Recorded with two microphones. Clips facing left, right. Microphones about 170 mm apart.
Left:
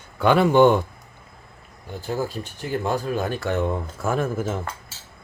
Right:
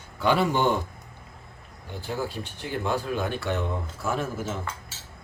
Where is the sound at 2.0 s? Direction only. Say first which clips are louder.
Left 4 dB; 45° left (ahead or behind).